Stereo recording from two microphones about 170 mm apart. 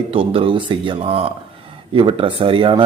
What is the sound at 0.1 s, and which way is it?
A man's voice, 35° right (ahead or behind).